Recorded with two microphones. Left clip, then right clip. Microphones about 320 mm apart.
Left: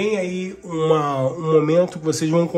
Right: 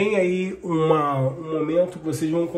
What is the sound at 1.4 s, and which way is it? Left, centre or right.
Speech, centre.